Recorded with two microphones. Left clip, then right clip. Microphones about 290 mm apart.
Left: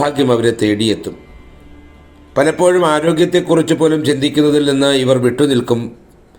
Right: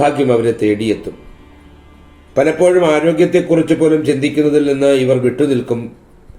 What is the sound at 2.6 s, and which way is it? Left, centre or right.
Speech, left.